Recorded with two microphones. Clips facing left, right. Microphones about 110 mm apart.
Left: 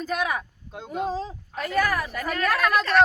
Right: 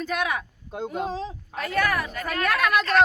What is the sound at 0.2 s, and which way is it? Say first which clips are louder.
Speech: even; 5° left (ahead or behind).